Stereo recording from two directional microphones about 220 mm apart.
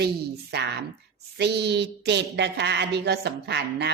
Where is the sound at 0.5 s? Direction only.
45° right (ahead or behind).